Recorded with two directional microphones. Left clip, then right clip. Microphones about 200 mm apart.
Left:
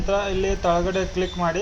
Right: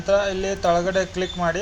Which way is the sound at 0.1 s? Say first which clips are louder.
Right 2 dB; 20° right (ahead or behind).